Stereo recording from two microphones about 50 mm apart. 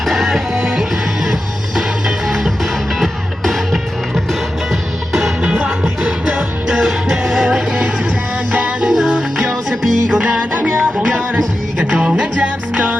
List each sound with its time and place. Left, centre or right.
0.0 s music: centre
5.4 s music: right
6.7 s music: centre
8.5 s music: right
8.9 s music: centre
10.5 s music: right